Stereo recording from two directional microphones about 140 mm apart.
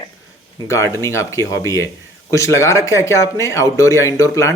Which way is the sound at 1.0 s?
20° left (ahead or behind).